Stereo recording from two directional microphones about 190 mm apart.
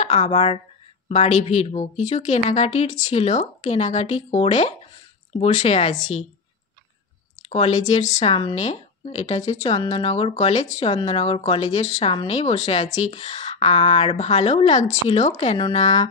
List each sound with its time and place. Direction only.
0.0 s speech: 30° left (ahead or behind)
7.4 s speech: 35° left (ahead or behind)